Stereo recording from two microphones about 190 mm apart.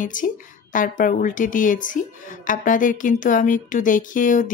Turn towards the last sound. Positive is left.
turn(degrees=45)  # may be behind; listen again after turning